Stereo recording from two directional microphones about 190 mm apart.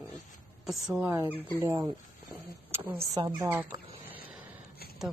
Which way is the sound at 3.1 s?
20° right (ahead or behind).